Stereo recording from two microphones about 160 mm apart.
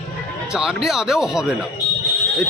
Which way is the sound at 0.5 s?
5° right (ahead or behind).